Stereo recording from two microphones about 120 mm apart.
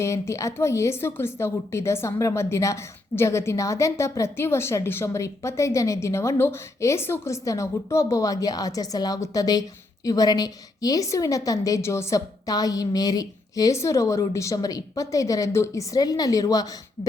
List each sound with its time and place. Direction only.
0.0 s a woman's voice: 25° left (ahead or behind)